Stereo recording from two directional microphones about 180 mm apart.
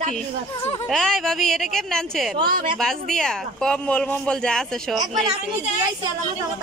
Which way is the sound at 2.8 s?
5° left (ahead or behind).